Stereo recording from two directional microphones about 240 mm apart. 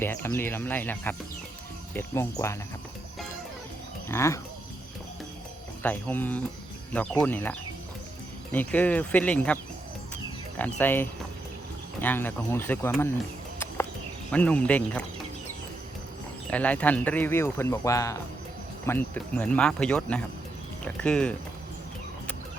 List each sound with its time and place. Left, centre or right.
0.0 s speech: centre
4.1 s speech: centre
5.8 s speech: centre
8.5 s speech: centre
10.6 s speech: centre
14.3 s speech: centre
16.5 s speech: centre